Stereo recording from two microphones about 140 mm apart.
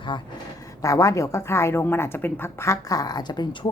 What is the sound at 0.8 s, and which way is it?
Speech, 25° left (ahead or behind).